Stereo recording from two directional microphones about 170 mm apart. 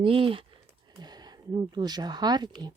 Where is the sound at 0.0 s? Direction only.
30° right (ahead or behind).